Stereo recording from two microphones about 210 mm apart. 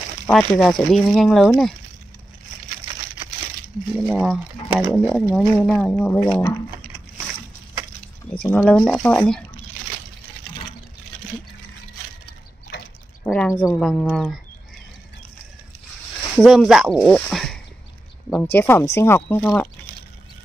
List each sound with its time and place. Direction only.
0.3 s speech: centre (ahead or behind)
4.0 s speech: centre (ahead or behind)
8.4 s speech: 5° left (ahead or behind)
13.2 s speech: 5° left (ahead or behind)
13.5 s speech: 15° left (ahead or behind)
13.7 s speech: 5° left (ahead or behind)
16.3 s speech: centre (ahead or behind)